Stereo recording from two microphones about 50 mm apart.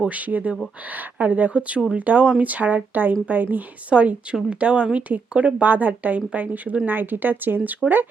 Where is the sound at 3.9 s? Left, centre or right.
Right.